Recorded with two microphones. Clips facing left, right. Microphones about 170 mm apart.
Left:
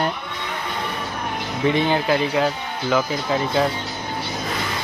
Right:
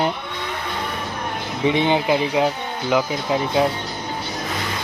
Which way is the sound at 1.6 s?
15° right (ahead or behind).